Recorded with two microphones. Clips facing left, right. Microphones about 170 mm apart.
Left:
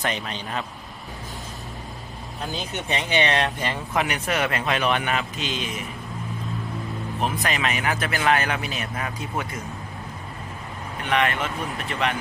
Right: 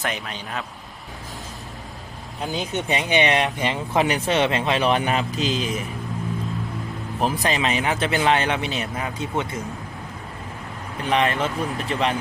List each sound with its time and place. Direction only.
0.0 s a man's voice: 5° right (ahead or behind)
2.5 s speech: 15° right (ahead or behind)
3.9 s a man's voice: 30° right (ahead or behind)
7.2 s speech: 30° right (ahead or behind)
11.0 s a man's voice: 30° right (ahead or behind)